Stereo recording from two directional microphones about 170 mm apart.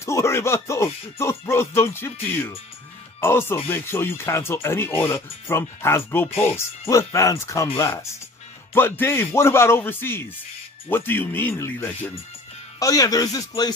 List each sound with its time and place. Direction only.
0.0 s a man's voice: 15° left (ahead or behind)